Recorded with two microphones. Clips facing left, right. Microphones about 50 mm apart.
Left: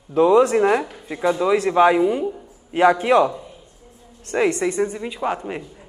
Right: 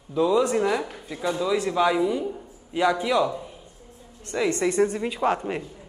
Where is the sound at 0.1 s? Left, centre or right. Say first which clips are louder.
Left 6 dB; left.